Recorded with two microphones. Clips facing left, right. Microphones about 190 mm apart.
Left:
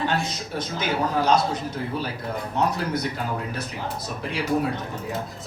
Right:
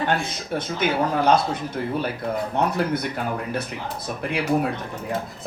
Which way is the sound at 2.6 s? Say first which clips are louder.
Even; 55° right (ahead or behind).